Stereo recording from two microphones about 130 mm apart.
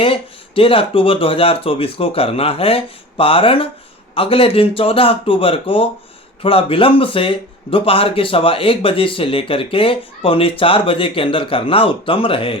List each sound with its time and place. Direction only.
0.0 s a man's voice: 45° left (ahead or behind)